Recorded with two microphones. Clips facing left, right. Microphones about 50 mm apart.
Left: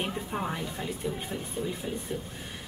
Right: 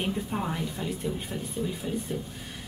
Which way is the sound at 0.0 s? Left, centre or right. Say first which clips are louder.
Right 2 dB; centre.